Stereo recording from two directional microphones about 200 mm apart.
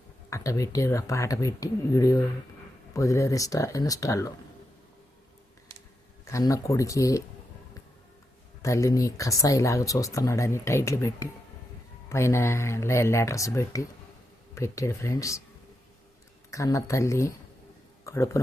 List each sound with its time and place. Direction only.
0.3 s speech: 15° left (ahead or behind)
6.3 s speech: 15° left (ahead or behind)
8.6 s speech: 15° left (ahead or behind)
16.5 s speech: 15° left (ahead or behind)